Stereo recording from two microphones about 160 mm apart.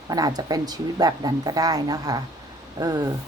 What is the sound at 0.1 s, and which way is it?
Speech, 25° right (ahead or behind).